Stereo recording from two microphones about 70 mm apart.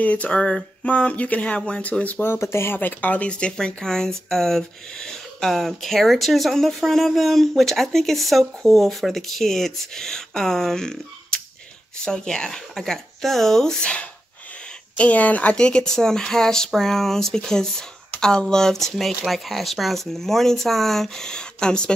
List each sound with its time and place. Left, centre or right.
0.0 s speech: left
2.2 s speech: left; by 21.9 s centre